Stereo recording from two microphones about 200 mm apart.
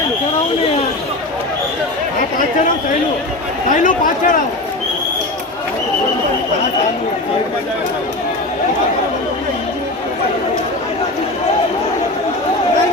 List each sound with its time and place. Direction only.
3.7 s speech: 40° left (ahead or behind)